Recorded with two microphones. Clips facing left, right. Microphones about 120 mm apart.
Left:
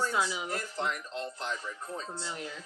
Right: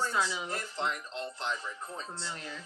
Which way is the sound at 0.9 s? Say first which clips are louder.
Left 1 dB; 40° left (ahead or behind).